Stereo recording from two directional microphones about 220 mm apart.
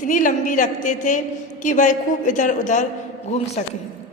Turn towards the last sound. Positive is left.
turn(degrees=30)  # may be behind; listen again after turning